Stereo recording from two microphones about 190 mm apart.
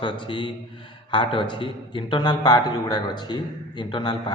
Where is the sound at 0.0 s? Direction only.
25° left (ahead or behind).